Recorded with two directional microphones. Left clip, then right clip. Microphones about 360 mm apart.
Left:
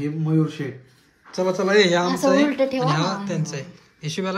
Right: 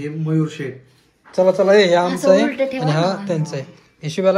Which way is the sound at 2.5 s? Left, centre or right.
Left.